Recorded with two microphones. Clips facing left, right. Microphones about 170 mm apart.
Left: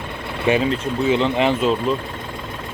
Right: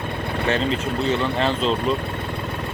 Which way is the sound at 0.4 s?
10° left (ahead or behind).